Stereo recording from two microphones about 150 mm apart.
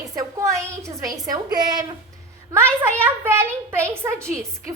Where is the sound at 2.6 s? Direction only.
15° right (ahead or behind).